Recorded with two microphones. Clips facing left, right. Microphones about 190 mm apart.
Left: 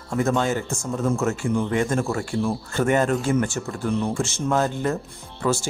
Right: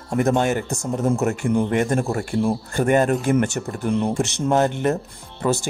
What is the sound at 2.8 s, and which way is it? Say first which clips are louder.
Speech: right 2 dB; 15° right (ahead or behind).